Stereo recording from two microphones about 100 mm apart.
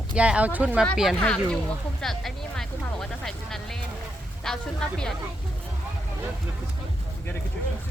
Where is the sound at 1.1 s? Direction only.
10° left (ahead or behind).